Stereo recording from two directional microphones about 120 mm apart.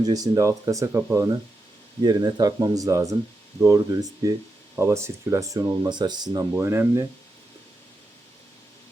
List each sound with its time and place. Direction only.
0.0 s speech: 30° right (ahead or behind)
5.8 s speech: 40° right (ahead or behind)
6.5 s speech: 20° right (ahead or behind)